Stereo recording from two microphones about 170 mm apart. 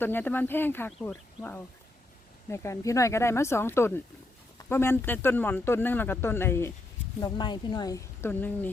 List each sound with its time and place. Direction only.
0.0 s speech: 10° left (ahead or behind)
2.5 s speech: 15° left (ahead or behind)
7.2 s speech: 25° left (ahead or behind)